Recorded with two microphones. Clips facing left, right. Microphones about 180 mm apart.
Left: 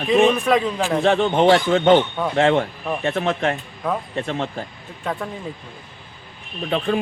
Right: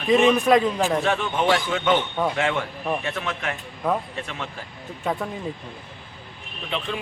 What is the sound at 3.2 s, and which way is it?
Speech, 30° left (ahead or behind).